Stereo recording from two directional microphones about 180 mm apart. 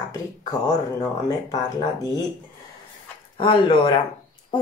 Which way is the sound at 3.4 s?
30° left (ahead or behind).